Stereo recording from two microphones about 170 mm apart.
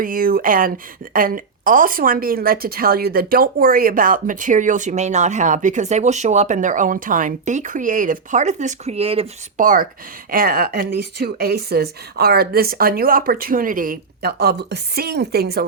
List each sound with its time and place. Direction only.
0.0 s a woman's voice: 55° right (ahead or behind); by 9.2 s 35° right (ahead or behind)
9.6 s speech: 55° right (ahead or behind)